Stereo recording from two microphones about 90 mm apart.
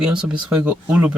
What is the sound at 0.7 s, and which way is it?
Speech, 15° right (ahead or behind).